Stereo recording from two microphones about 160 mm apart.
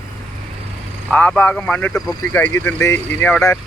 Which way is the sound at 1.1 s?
10° left (ahead or behind).